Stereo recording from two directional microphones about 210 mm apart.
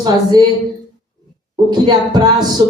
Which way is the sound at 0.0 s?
20° right (ahead or behind).